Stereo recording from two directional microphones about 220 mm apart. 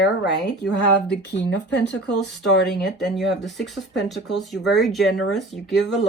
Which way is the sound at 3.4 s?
Centre (ahead or behind).